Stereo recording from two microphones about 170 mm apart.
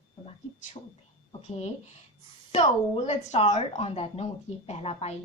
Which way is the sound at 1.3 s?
40° left (ahead or behind).